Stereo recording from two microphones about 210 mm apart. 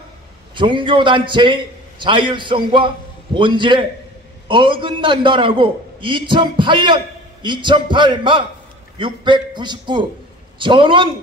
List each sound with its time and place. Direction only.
0.6 s a man's voice: 25° right (ahead or behind)